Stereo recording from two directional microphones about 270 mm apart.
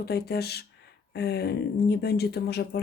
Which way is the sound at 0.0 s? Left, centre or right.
Left.